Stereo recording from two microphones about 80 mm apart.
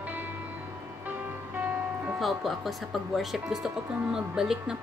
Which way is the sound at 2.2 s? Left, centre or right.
Centre.